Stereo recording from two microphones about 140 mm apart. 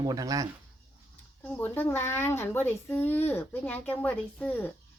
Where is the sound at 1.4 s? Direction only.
10° left (ahead or behind).